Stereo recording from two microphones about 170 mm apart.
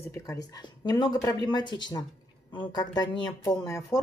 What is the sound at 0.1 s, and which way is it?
A woman's voice, 20° left (ahead or behind).